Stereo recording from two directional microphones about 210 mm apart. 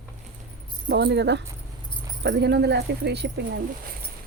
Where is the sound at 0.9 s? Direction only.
55° right (ahead or behind).